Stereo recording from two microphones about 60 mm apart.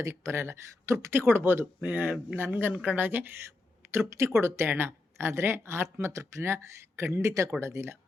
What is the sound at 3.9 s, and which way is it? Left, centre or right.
Speech, right.